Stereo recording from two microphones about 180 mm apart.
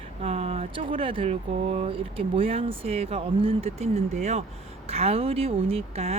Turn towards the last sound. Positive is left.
turn(degrees=-35)  # may be behind; listen again after turning